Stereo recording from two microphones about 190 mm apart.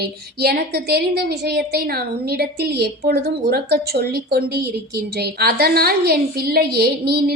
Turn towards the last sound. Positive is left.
turn(degrees=-55)  # may be behind; listen again after turning